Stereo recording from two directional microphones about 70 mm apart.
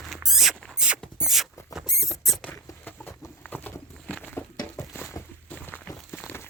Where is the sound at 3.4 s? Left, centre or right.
Left.